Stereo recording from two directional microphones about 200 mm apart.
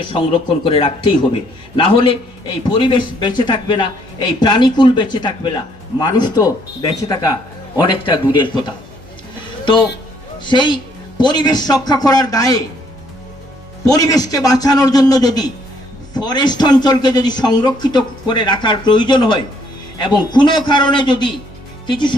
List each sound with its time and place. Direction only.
0.1 s speech: 25° left (ahead or behind)
10.4 s speech: 25° left (ahead or behind)
13.8 s speech: 20° left (ahead or behind)